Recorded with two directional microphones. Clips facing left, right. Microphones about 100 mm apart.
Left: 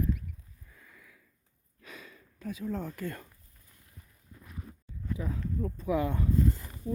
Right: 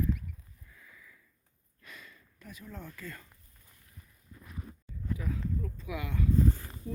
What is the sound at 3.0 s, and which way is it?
Speech, 55° left (ahead or behind).